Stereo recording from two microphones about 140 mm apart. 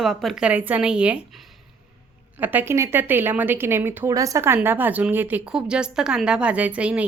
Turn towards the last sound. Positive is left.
turn(degrees=-10)  # may be behind; listen again after turning